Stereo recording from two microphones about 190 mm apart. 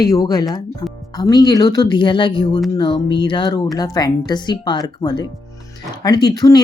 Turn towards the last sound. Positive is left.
turn(degrees=20)  # may be behind; listen again after turning